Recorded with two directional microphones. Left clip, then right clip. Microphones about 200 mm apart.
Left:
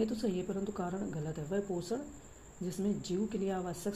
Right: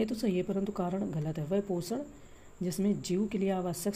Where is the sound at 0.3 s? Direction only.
40° right (ahead or behind).